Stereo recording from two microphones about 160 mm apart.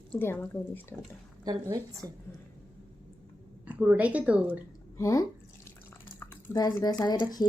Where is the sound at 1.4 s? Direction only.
25° right (ahead or behind).